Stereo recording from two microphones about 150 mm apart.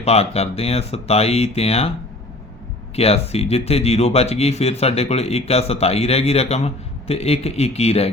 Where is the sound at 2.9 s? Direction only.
45° left (ahead or behind).